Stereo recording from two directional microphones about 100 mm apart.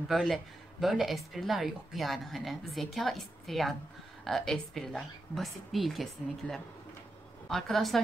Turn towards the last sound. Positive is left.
turn(degrees=0)  # may be behind; listen again after turning